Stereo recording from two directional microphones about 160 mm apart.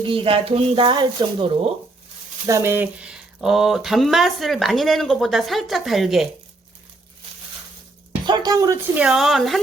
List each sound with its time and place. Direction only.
0.1 s speech: 35° right (ahead or behind)
2.5 s speech: 15° right (ahead or behind)
8.3 s a woman's voice: 25° right (ahead or behind)
9.0 s speech: 5° right (ahead or behind)